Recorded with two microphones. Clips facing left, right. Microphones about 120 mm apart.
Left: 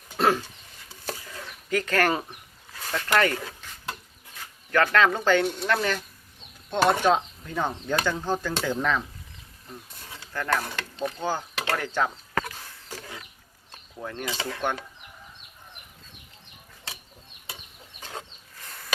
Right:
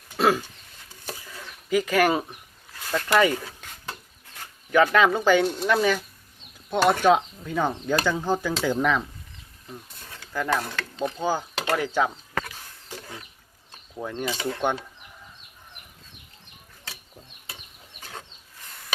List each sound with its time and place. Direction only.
0.2 s speech: 5° right (ahead or behind)
1.7 s speech: 10° right (ahead or behind)
4.7 s speech: 10° right (ahead or behind)
10.3 s speech: 10° right (ahead or behind)
14.0 s speech: 15° right (ahead or behind)